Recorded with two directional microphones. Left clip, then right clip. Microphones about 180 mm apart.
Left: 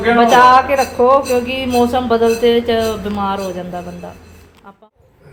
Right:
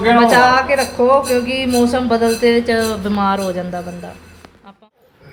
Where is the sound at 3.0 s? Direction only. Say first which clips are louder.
Right 2 dB; 15° right (ahead or behind).